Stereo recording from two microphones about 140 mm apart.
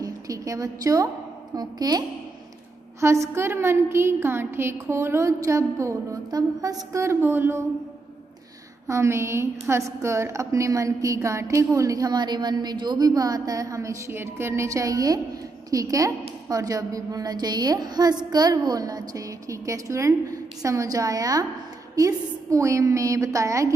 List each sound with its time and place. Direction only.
0.0 s a woman's voice: 25° right (ahead or behind)
8.8 s a woman's voice: 20° right (ahead or behind)